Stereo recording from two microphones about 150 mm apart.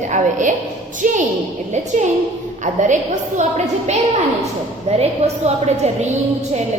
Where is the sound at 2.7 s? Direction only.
55° right (ahead or behind).